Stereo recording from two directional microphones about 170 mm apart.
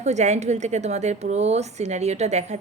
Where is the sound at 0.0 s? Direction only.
40° right (ahead or behind).